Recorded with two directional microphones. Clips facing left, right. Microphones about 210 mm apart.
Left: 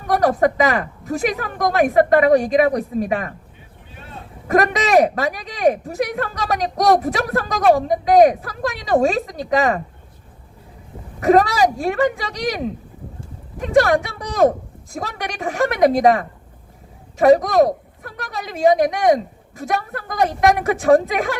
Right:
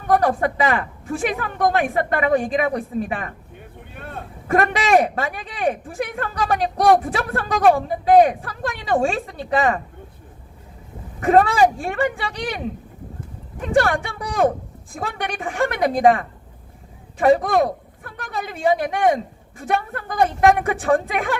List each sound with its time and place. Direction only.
0.2 s a woman's voice: 40° left (ahead or behind)
3.9 s vehicle: 55° right (ahead or behind)
4.4 s a woman's voice: 40° left (ahead or behind)
11.3 s a woman's voice: 40° left (ahead or behind)
13.7 s a woman's voice: 35° left (ahead or behind)